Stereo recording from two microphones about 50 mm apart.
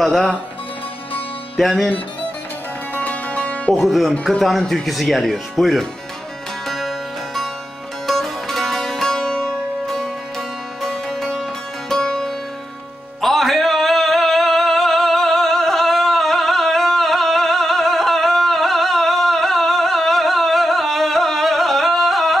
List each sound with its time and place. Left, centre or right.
0.0 s speech: centre
1.6 s speech: centre
2.9 s music: left
3.7 s speech: centre
6.7 s music: centre